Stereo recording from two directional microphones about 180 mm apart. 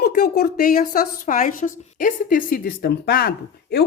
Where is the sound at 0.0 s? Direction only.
60° left (ahead or behind).